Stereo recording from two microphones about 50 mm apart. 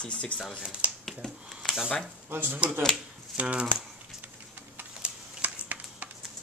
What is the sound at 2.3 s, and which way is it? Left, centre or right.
Speech, right.